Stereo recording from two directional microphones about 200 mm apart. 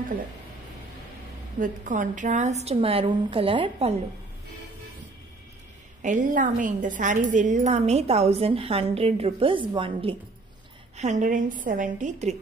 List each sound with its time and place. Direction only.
1.6 s a woman's voice: 40° right (ahead or behind)
6.0 s a woman's voice: 40° right (ahead or behind)
11.0 s a woman's voice: 35° right (ahead or behind)